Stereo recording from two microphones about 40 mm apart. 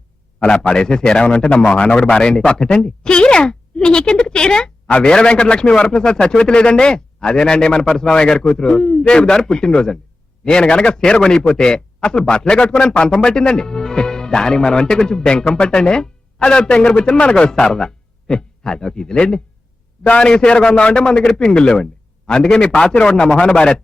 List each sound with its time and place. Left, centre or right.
0.5 s a man's voice: centre
4.9 s a man's voice: left
5.1 s a man's voice: left